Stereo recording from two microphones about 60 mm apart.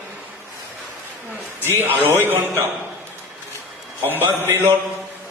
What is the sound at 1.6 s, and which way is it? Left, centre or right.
Speech, right.